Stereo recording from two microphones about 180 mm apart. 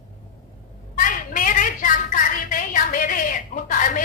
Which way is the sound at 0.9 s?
45° left (ahead or behind).